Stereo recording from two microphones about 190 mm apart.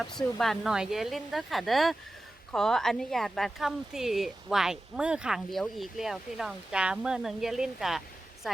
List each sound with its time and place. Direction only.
0.0 s speech: centre (ahead or behind)